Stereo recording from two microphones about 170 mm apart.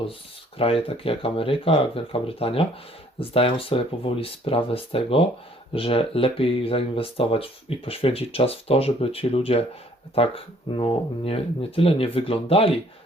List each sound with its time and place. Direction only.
0.6 s speech: 35° left (ahead or behind)